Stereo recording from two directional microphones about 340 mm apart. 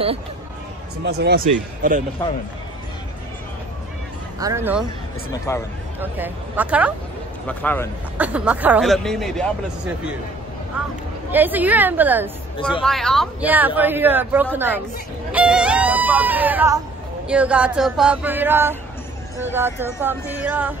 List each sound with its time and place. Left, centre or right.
1.0 s a man's voice: right
4.4 s speech: centre
5.5 s speech: centre
5.9 s speech: centre
11.3 s speech: centre
15.3 s a sound: centre
17.3 s speech: centre